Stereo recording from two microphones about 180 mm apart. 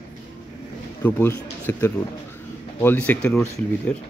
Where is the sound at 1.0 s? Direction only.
15° left (ahead or behind).